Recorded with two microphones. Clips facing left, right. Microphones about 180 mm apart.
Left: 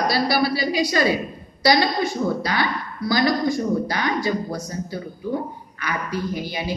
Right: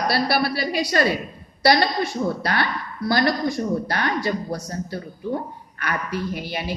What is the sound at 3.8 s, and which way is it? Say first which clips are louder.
Speech: left 1 dB; 60° right (ahead or behind).